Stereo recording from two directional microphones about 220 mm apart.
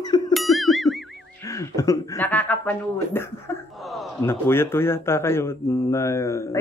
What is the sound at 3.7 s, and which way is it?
Speech, centre (ahead or behind).